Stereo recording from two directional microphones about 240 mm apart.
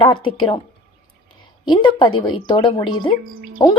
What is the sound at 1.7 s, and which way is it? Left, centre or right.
Speech, centre.